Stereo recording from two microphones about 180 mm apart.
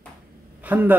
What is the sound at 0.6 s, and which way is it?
Speech, 10° right (ahead or behind).